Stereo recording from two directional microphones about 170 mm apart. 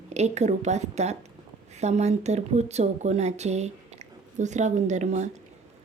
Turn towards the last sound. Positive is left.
turn(degrees=-45)  # may be behind; listen again after turning